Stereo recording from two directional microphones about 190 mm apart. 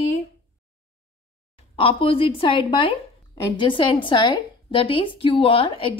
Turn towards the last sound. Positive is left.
turn(degrees=30)  # may be behind; listen again after turning